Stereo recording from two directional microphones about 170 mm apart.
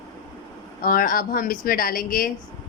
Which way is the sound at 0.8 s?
55° left (ahead or behind).